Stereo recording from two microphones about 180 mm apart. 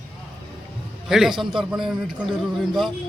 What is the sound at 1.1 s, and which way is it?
A man's voice, centre (ahead or behind).